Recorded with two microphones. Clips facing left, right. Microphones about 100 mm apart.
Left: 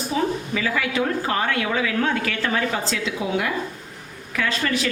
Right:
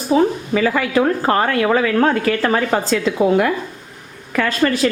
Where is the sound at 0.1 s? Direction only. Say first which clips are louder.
Right 9 dB; 40° right (ahead or behind).